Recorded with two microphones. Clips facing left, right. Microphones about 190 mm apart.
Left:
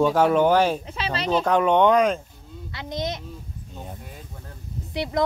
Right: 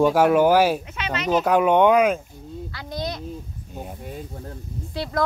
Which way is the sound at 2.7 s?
20° left (ahead or behind).